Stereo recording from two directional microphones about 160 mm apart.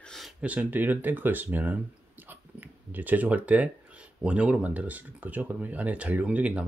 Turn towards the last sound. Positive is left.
turn(degrees=-10)  # may be behind; listen again after turning